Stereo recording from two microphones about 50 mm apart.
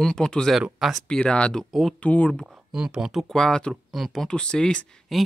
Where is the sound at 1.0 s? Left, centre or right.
Left.